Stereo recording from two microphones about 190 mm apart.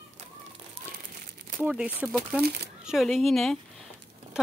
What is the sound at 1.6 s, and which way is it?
A woman's voice, 10° right (ahead or behind).